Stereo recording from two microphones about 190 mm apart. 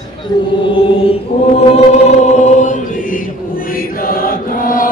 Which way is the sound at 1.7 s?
35° left (ahead or behind).